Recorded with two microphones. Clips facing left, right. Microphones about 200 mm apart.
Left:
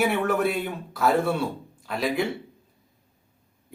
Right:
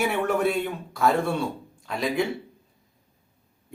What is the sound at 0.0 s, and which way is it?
Speech, centre (ahead or behind).